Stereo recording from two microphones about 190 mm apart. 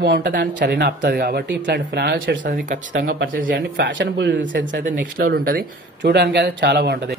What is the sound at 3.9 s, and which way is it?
Speech, 70° right (ahead or behind).